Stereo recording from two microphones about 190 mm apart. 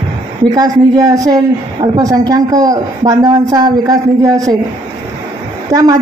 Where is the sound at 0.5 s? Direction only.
20° right (ahead or behind).